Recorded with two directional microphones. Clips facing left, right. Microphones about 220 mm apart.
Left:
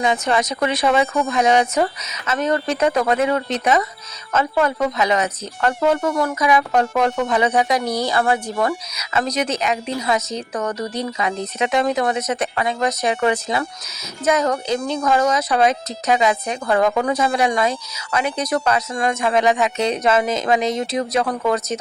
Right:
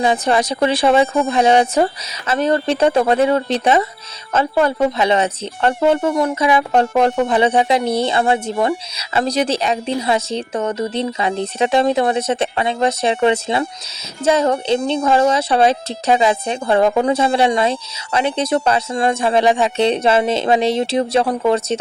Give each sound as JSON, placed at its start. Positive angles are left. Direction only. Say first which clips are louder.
{"t": 0.0, "sound": "speech", "louder": "right 3 dB", "side_deg": -35}